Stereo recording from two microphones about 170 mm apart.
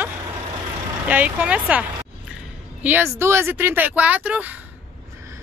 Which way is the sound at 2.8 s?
15° right (ahead or behind).